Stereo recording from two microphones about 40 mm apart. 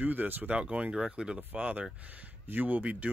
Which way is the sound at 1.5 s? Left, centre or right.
Right.